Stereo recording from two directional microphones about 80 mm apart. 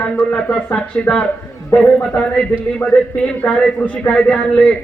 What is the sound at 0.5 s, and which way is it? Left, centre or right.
Speech, centre.